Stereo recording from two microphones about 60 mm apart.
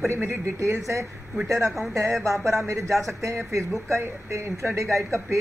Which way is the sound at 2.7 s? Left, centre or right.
Right.